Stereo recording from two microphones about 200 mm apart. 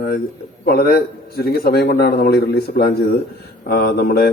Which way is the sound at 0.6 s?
50° left (ahead or behind).